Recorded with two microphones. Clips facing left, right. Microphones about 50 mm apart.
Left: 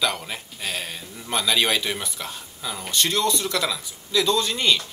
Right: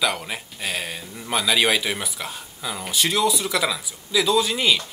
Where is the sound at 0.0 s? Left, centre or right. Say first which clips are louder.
Right 1 dB; centre.